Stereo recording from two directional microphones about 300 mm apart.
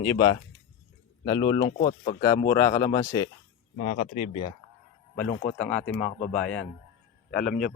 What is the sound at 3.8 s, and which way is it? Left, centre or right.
Speech, left.